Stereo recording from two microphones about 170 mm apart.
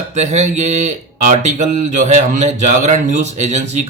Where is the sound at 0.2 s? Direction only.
40° right (ahead or behind).